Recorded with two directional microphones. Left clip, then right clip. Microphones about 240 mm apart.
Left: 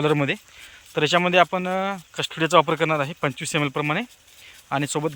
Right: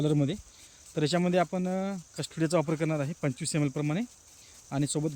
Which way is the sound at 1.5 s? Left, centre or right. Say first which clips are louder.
Left 9 dB; left.